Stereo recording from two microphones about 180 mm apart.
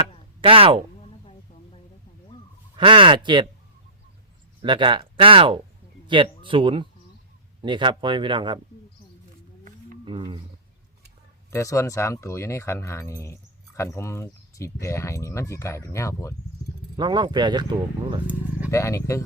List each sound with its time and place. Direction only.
0.4 s speech: 30° right (ahead or behind)
2.7 s speech: 25° right (ahead or behind)
4.6 s speech: 25° right (ahead or behind)
10.1 s speech: 25° right (ahead or behind)
11.5 s speech: 15° left (ahead or behind)
17.0 s speech: 25° right (ahead or behind)
18.7 s speech: 15° left (ahead or behind)